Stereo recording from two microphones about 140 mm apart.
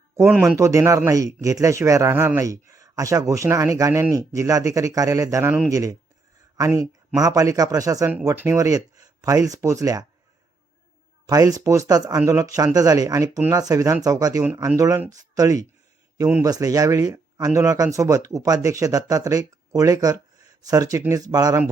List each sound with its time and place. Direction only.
0.3 s speech: 5° right (ahead or behind)
0.5 s speech: 20° right (ahead or behind)
11.3 s speech: 25° right (ahead or behind)
20.4 s a sound: 25° right (ahead or behind)
21.0 s speech: 25° right (ahead or behind)